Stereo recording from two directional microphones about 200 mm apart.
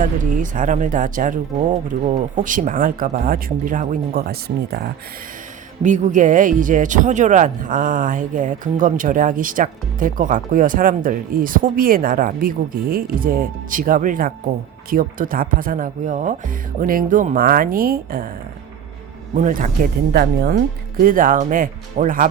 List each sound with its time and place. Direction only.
0.0 s speech: 40° right (ahead or behind)
5.8 s speech: 35° right (ahead or behind)
19.3 s speech: 40° right (ahead or behind)